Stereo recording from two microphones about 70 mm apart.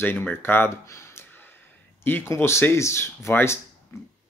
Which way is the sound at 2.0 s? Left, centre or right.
Left.